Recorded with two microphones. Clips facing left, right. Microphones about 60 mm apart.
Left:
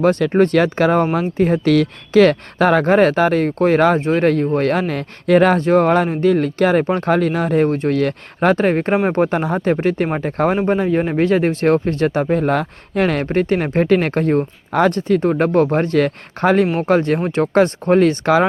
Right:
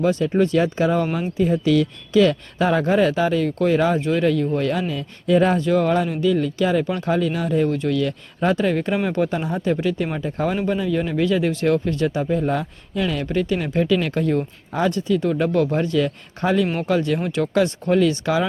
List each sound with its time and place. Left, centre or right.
0.0 s speech: left
5.5 s speech: left
10.6 s speech: left
14.7 s speech: left
14.9 s speech: left
16.8 s speech: left